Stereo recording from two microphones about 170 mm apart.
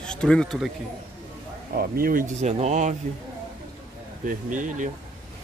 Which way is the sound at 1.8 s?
60° right (ahead or behind).